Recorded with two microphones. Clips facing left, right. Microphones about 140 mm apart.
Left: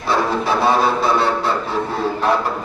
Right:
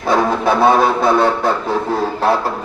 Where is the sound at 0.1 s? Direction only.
55° right (ahead or behind).